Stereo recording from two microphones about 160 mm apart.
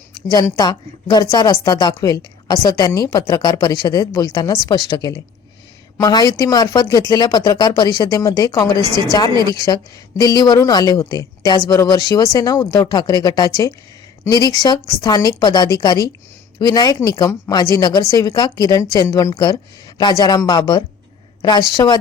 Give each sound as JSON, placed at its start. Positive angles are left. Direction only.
{"t": 0.3, "sound": "a woman's voice", "side_deg": 20}